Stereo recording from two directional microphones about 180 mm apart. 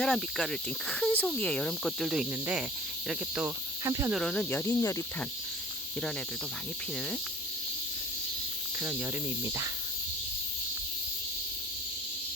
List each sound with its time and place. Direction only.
0.0 s speech: centre (ahead or behind)
3.1 s cricket: 5° right (ahead or behind)
3.8 s cricket: 20° right (ahead or behind)
4.1 s cricket: 5° left (ahead or behind)
8.8 s cricket: 10° right (ahead or behind)